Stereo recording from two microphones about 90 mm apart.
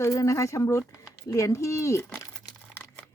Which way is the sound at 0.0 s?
35° left (ahead or behind).